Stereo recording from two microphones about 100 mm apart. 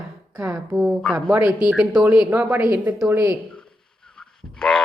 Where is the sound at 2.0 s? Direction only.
20° right (ahead or behind).